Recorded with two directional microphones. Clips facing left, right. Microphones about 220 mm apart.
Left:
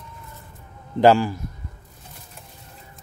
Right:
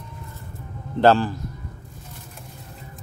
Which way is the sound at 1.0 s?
10° left (ahead or behind).